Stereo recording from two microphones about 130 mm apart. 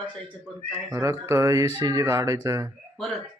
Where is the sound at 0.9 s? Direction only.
20° right (ahead or behind).